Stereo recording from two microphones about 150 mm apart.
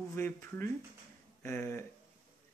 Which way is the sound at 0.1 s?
15° left (ahead or behind).